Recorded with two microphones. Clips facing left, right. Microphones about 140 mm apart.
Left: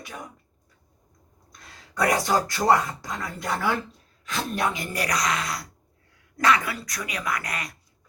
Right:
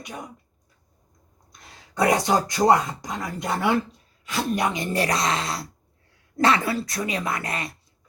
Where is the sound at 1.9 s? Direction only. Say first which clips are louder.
Right 2 dB; 25° right (ahead or behind).